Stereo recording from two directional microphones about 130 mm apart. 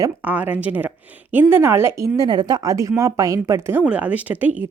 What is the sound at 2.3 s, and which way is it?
Speech, 35° right (ahead or behind).